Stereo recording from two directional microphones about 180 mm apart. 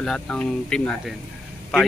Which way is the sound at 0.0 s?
5° left (ahead or behind).